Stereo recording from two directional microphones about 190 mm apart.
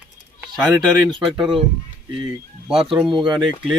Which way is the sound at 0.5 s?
5° right (ahead or behind).